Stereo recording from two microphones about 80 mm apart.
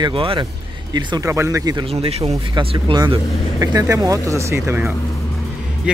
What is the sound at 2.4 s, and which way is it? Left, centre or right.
Speech, right.